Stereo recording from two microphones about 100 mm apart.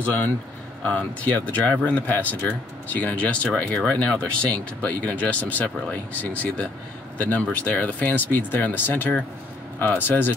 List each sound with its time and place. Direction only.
0.8 s speech: 15° left (ahead or behind)